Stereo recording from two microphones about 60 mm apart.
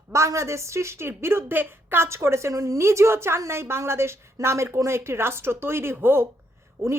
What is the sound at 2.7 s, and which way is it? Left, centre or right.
A woman's voice, right.